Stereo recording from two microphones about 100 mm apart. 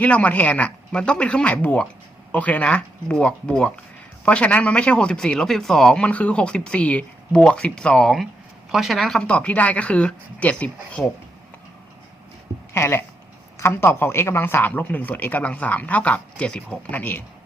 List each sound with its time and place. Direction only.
0.0 s speech: 15° left (ahead or behind)
12.7 s speech: 25° left (ahead or behind)